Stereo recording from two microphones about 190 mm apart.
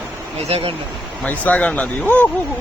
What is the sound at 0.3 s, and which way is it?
Speech, 30° right (ahead or behind).